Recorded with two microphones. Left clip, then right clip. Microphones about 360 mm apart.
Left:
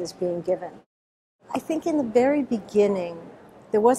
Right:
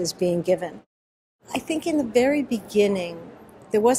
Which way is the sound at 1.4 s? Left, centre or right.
Left.